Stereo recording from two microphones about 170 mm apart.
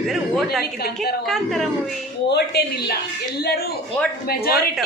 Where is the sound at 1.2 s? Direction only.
Centre (ahead or behind).